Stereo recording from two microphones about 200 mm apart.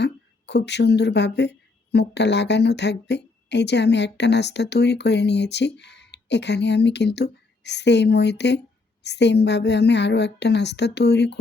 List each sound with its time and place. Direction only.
0.0 s a woman's voice: 60° left (ahead or behind)